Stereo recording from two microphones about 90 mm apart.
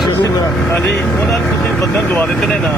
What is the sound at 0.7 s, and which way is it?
Speech, 25° left (ahead or behind).